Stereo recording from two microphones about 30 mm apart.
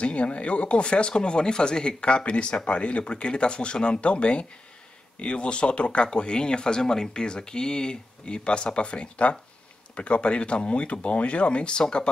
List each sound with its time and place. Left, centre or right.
0.0 s speech: left